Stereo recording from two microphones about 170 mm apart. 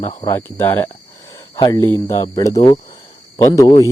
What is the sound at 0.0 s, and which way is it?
Speech, 40° left (ahead or behind).